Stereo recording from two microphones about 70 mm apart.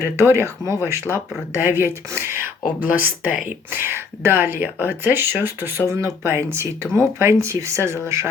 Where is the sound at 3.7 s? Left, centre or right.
Right.